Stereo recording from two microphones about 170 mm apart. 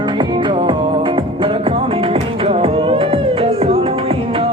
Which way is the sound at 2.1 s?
35° right (ahead or behind).